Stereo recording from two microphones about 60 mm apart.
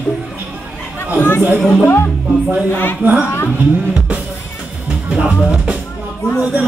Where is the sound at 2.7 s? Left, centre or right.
Left.